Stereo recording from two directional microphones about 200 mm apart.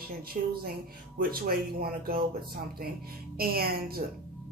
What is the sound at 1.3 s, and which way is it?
Speech, 45° right (ahead or behind).